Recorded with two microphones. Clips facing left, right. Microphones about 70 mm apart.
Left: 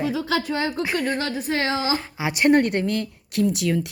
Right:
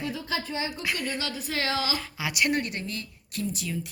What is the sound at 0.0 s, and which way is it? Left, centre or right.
Speech, left.